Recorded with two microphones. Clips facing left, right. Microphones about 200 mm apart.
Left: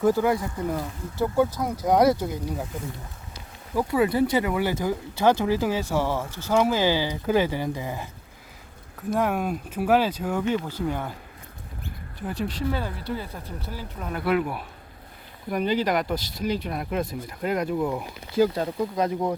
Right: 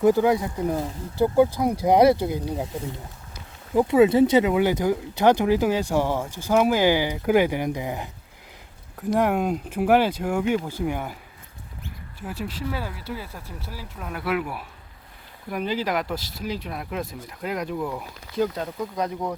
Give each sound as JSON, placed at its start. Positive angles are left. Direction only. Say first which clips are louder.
{"t": 0.0, "sound": "speech", "louder": "right 3 dB", "side_deg": -15}
{"t": 1.4, "sound": "speech", "louder": "right 4 dB", "side_deg": -10}
{"t": 3.8, "sound": "speech", "louder": "right 5 dB", "side_deg": -25}
{"t": 12.2, "sound": "speech", "louder": "left 3 dB", "side_deg": -5}
{"t": 17.7, "sound": "speech", "louder": "left 3 dB", "side_deg": 15}